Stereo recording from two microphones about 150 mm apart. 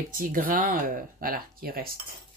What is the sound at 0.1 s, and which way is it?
Speech, 65° right (ahead or behind).